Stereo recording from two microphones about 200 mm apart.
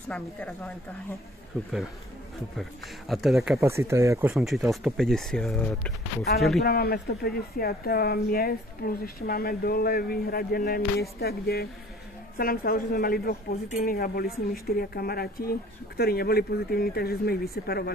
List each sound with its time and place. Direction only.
0.1 s a woman's voice: 5° left (ahead or behind)
3.1 s speech: centre (ahead or behind)
3.6 s speech: 15° right (ahead or behind)
4.4 s speech: centre (ahead or behind)
6.6 s speech: 50° left (ahead or behind)